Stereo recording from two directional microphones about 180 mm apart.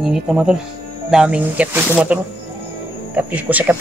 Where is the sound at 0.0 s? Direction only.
5° right (ahead or behind).